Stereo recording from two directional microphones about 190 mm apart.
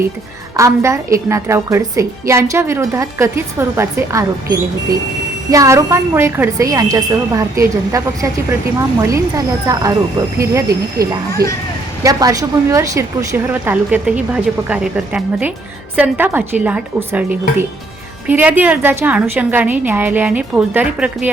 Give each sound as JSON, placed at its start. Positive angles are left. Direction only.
{"t": 0.5, "sound": "a woman's voice", "side_deg": -15}